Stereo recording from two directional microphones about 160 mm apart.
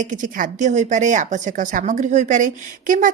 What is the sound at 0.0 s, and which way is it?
A woman's voice, 55° right (ahead or behind).